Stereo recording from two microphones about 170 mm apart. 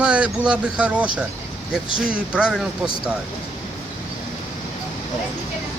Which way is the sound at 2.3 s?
5° right (ahead or behind).